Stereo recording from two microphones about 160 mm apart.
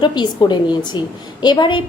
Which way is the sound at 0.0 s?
25° left (ahead or behind).